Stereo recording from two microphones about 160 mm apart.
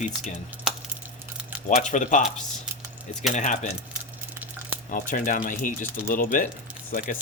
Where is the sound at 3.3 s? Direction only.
50° left (ahead or behind).